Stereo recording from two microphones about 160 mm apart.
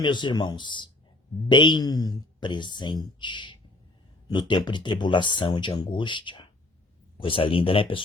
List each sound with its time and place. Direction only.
0.0 s speech: 30° left (ahead or behind)